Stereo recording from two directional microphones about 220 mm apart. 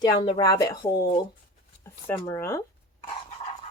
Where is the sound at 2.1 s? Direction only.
10° left (ahead or behind).